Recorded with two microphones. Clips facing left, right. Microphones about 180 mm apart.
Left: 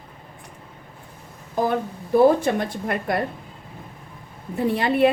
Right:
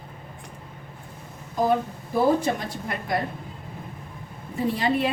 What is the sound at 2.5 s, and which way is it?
Speech, 55° left (ahead or behind).